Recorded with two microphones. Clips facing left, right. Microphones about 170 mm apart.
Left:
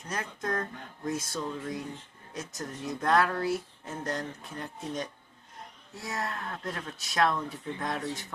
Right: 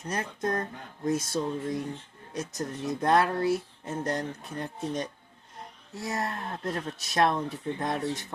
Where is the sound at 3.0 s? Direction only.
20° right (ahead or behind).